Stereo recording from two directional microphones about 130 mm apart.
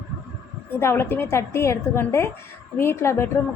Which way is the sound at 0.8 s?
20° left (ahead or behind).